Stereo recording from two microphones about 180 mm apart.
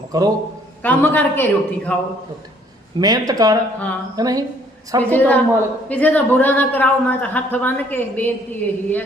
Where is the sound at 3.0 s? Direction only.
20° right (ahead or behind).